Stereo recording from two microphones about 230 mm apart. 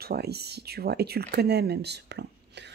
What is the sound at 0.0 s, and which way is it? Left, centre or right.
Speech, right.